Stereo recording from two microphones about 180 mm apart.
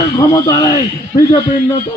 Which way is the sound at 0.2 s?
20° left (ahead or behind).